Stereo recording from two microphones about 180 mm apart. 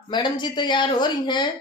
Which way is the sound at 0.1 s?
25° left (ahead or behind).